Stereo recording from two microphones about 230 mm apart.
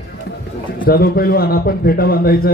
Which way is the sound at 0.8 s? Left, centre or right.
Left.